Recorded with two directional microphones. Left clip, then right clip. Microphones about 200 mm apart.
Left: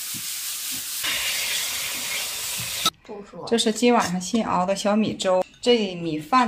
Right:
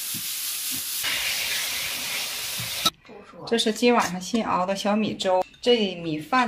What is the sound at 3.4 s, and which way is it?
Speech, 5° left (ahead or behind).